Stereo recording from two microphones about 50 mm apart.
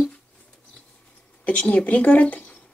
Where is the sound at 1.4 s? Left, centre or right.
Left.